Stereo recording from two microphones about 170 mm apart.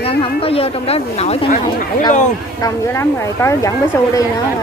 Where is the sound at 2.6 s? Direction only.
15° left (ahead or behind).